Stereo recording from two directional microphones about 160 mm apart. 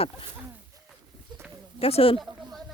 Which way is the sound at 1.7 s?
35° left (ahead or behind).